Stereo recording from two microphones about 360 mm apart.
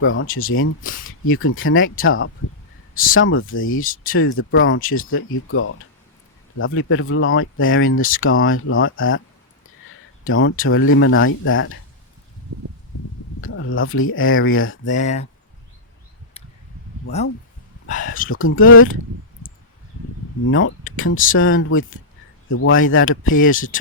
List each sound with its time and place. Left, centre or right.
0.0 s speech: left
10.2 s speech: left
13.4 s speech: left
14.8 s speech: centre
17.8 s speech: left
18.3 s speech: left
20.4 s speech: left